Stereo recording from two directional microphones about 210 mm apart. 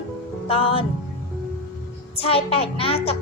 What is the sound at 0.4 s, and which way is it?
Music, 25° left (ahead or behind).